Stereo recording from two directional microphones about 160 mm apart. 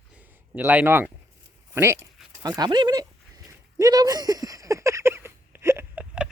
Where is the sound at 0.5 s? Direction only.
10° right (ahead or behind).